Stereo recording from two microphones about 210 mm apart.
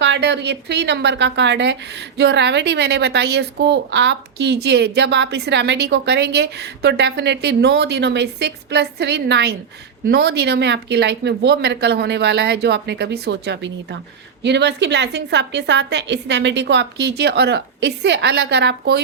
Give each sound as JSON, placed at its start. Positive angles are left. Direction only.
{"t": 0.0, "sound": "a woman's voice", "side_deg": -55}